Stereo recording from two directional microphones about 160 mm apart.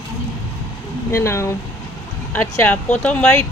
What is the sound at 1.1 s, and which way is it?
Speech, 15° left (ahead or behind).